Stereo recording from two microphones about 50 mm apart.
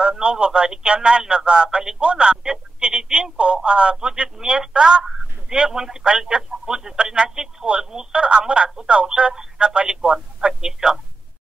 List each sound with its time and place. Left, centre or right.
0.0 s speech: centre
5.0 s honk: centre
5.6 s speech: centre
10.1 s a sound: centre